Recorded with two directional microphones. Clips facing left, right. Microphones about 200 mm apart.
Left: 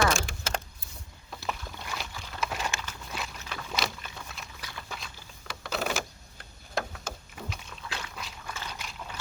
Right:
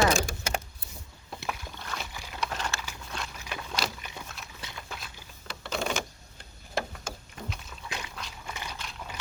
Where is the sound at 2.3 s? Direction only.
5° left (ahead or behind).